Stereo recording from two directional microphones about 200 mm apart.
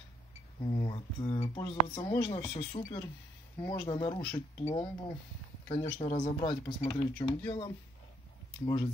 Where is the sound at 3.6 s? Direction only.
20° left (ahead or behind).